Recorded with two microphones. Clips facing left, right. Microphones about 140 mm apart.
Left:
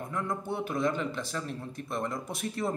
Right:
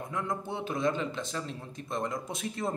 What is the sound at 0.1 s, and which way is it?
A man's voice, 20° right (ahead or behind).